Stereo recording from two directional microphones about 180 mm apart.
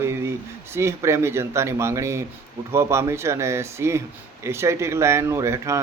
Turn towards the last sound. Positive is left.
turn(degrees=-15)  # may be behind; listen again after turning